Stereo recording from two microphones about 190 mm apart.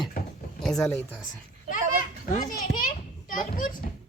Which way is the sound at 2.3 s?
45° left (ahead or behind).